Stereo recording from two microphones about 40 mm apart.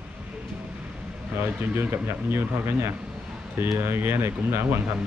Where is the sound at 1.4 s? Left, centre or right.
Right.